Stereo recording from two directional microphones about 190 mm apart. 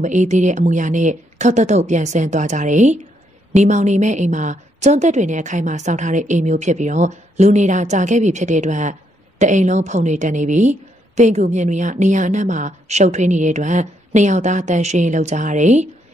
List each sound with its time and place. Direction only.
0.0 s a woman's voice: 40° right (ahead or behind)